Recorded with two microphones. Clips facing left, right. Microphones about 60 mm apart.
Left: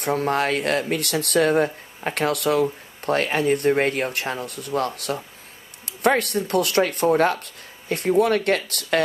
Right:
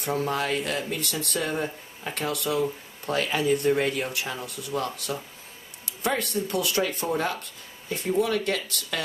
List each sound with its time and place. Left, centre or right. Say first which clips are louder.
0.0 s speech: left 5 dB; left